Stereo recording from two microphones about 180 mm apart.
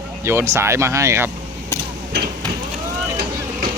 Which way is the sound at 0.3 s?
15° right (ahead or behind).